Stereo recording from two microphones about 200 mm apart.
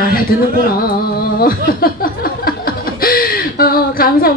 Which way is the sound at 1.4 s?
45° left (ahead or behind).